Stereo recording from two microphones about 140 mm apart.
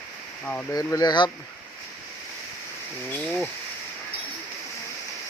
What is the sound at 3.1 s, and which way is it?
Speech, 5° left (ahead or behind).